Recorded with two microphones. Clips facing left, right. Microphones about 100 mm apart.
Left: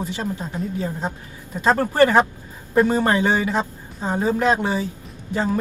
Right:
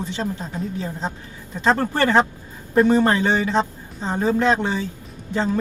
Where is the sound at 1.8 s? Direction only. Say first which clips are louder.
Left 5 dB; 15° left (ahead or behind).